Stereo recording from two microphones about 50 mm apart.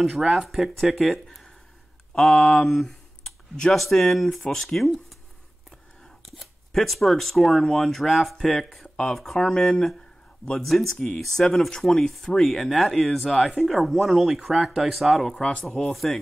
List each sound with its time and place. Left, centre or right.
0.5 s speech: centre
6.3 s speech: centre
8.8 s a sound: centre
9.1 s speech: centre
15.2 s speech: centre